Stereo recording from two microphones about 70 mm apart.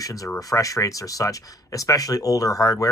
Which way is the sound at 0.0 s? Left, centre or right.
Left.